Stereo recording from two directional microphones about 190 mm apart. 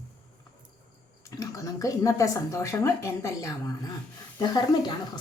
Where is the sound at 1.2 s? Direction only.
15° left (ahead or behind).